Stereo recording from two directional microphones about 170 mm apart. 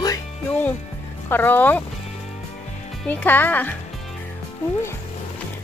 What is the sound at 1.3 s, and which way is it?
Speech, 10° left (ahead or behind).